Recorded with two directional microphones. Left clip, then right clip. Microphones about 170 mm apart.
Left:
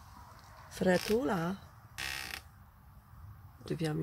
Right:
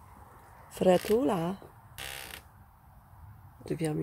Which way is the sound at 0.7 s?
25° right (ahead or behind).